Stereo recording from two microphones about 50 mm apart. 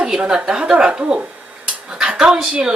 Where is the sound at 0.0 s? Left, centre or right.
Centre.